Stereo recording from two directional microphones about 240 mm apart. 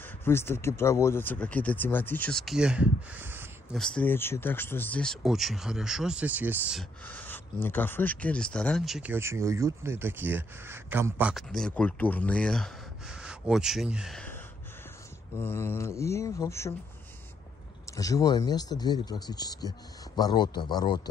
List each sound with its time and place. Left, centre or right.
0.0 s speech: centre
3.7 s speech: centre
15.4 s speech: centre
17.9 s speech: centre